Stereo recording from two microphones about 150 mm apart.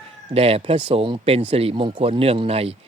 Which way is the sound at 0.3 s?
40° right (ahead or behind).